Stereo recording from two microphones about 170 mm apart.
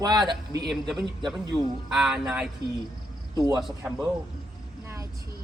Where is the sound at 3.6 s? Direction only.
5° right (ahead or behind).